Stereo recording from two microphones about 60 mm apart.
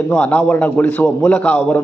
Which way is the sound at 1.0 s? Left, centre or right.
Centre.